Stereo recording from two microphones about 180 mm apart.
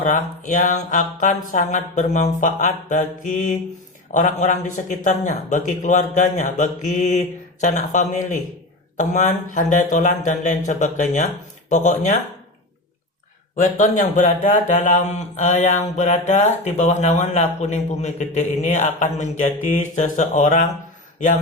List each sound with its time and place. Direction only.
0.0 s a man's voice: 45° left (ahead or behind)
13.6 s a man's voice: 45° left (ahead or behind)